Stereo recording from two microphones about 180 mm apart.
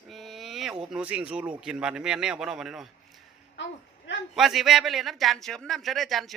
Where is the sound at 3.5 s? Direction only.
85° left.